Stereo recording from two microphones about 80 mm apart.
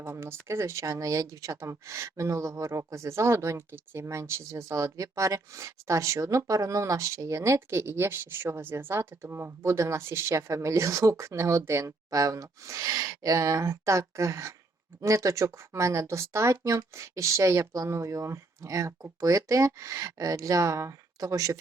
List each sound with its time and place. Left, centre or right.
0.0 s speech: right